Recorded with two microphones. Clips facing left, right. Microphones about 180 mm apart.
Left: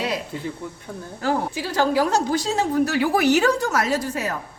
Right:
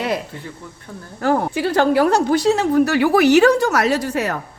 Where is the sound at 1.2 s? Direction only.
60° right (ahead or behind).